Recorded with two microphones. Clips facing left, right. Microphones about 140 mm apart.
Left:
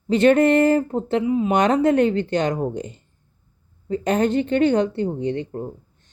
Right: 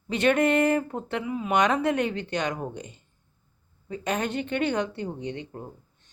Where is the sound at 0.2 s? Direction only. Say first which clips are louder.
Left 6 dB; 35° left (ahead or behind).